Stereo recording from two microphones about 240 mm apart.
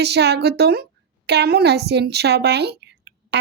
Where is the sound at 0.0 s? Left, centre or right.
Right.